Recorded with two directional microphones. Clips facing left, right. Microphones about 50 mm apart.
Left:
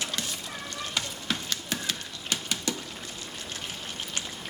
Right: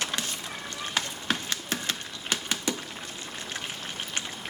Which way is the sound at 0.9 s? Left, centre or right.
Right.